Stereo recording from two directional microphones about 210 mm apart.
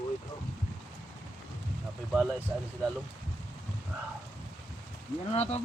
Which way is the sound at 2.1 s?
5° right (ahead or behind).